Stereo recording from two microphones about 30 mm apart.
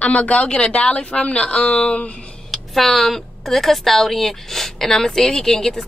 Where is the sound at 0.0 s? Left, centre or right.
Left.